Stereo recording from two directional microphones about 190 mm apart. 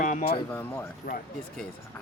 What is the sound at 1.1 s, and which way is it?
Speech, 50° left (ahead or behind).